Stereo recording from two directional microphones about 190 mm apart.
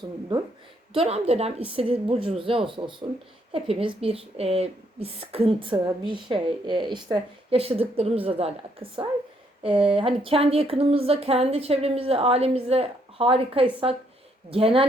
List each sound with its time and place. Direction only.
0.9 s a woman's voice: 35° right (ahead or behind)